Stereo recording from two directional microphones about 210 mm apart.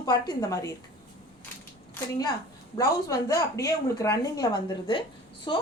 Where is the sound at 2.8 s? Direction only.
15° left (ahead or behind).